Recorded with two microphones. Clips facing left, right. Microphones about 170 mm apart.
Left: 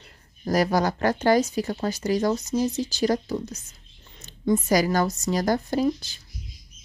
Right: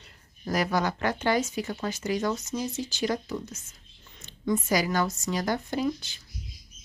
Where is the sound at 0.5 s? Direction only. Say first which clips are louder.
Left 5 dB; 35° left (ahead or behind).